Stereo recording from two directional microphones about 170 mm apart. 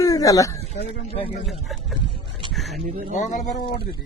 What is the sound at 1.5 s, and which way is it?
Speech, centre (ahead or behind).